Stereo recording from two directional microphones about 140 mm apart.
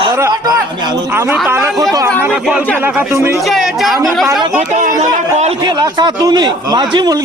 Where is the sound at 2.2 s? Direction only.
10° right (ahead or behind).